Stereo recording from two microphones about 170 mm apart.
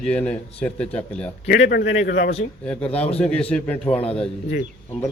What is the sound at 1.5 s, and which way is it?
Speech, 90° left.